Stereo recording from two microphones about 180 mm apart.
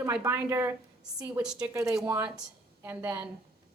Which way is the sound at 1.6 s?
20° right (ahead or behind).